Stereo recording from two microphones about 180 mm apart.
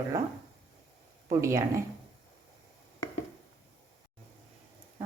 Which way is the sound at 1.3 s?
15° right (ahead or behind).